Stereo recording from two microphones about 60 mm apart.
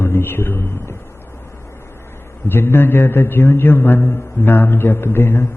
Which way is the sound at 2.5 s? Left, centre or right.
Left.